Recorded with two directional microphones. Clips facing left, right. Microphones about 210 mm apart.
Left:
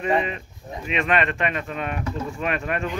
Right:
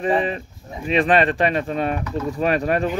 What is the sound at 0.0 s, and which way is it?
Speech, 35° right (ahead or behind).